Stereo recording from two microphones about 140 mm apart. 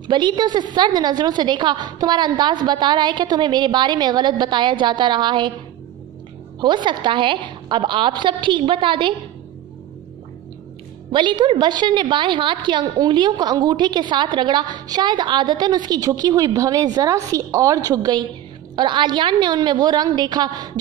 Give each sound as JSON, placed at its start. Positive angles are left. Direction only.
{"t": 0.0, "sound": "a woman's voice", "side_deg": -35}
{"t": 6.6, "sound": "a woman's voice", "side_deg": -35}
{"t": 11.1, "sound": "a woman's voice", "side_deg": -35}